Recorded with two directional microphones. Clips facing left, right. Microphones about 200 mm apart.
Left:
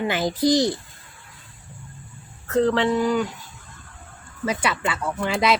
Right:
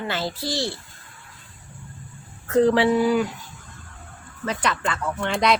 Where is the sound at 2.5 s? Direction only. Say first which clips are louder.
Right 2 dB; 15° right (ahead or behind).